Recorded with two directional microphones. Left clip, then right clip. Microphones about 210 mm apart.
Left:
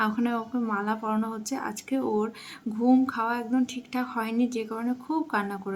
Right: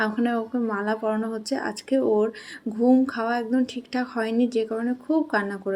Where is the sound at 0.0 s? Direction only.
10° right (ahead or behind).